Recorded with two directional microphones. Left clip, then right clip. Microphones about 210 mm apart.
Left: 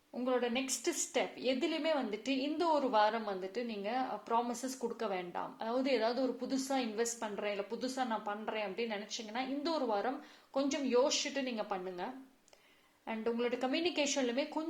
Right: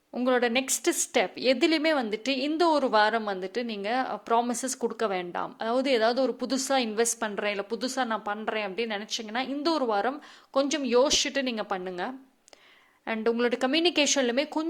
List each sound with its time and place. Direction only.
0.1 s a woman's voice: 40° right (ahead or behind)